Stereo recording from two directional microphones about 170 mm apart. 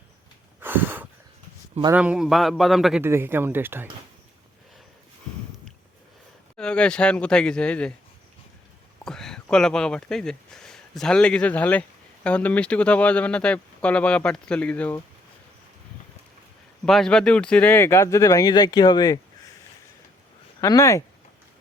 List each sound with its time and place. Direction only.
0.6 s snort: 10° right (ahead or behind)
1.9 s speech: 5° right (ahead or behind)
3.0 s speech: 15° right (ahead or behind)
6.6 s speech: 5° left (ahead or behind)
9.0 s speech: 5° left (ahead or behind)
16.8 s speech: 5° left (ahead or behind); by 19.2 s 25° left (ahead or behind)
20.6 s speech: 20° left (ahead or behind)